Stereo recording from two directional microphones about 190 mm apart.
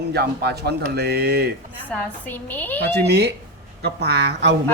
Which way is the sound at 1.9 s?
10° left (ahead or behind).